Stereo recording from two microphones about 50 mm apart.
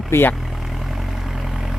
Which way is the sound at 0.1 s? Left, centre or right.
Left.